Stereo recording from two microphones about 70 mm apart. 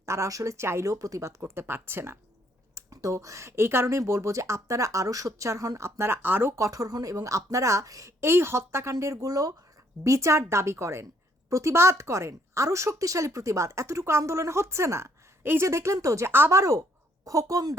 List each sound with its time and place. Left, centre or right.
0.0 s a woman's voice: right
0.9 s speech: right
2.7 s a woman's voice: right
6.2 s speech: right
6.6 s a woman's voice: right